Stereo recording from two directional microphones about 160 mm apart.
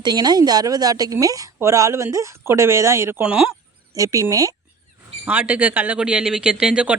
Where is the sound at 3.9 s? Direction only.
20° right (ahead or behind).